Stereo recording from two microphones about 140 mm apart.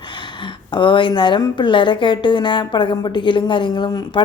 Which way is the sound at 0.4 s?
35° left (ahead or behind).